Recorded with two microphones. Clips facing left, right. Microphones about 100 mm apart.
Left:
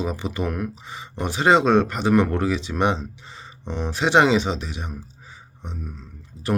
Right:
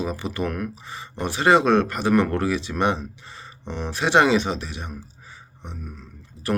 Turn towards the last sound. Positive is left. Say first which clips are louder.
# even
turn(degrees=20)  # may be behind; listen again after turning